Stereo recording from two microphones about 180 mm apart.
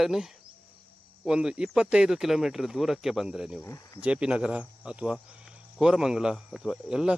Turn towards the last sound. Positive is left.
turn(degrees=-5)  # may be behind; listen again after turning